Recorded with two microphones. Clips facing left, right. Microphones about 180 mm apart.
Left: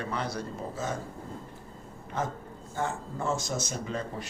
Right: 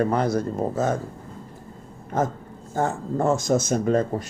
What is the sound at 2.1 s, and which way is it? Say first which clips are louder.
Speech: right 8 dB; 45° right (ahead or behind).